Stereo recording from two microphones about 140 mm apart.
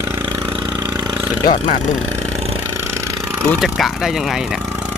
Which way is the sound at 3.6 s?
Centre (ahead or behind).